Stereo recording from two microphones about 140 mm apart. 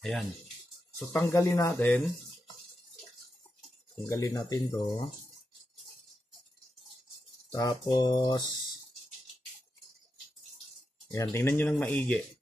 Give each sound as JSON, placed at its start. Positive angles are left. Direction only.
{"t": 0.9, "sound": "speech", "side_deg": 5}
{"t": 1.3, "sound": "speech", "side_deg": 20}
{"t": 4.0, "sound": "speech", "side_deg": 20}
{"t": 7.5, "sound": "speech", "side_deg": 25}
{"t": 11.1, "sound": "speech", "side_deg": 20}